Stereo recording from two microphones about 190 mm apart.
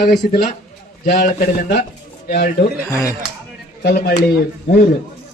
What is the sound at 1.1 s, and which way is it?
Speech, 45° left (ahead or behind).